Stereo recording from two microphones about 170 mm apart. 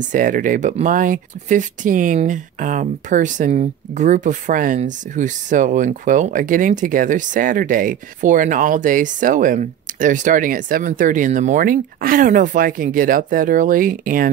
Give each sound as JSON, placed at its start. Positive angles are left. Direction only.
{"t": 0.1, "sound": "speech", "side_deg": -50}